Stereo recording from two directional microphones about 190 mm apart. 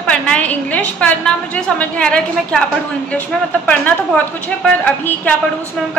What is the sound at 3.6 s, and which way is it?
A woman's voice, 10° left (ahead or behind).